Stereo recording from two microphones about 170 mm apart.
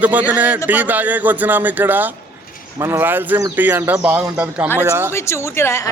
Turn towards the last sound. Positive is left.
turn(degrees=15)  # may be behind; listen again after turning